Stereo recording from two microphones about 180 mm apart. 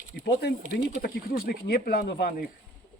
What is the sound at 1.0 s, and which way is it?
Speech, 55° left (ahead or behind).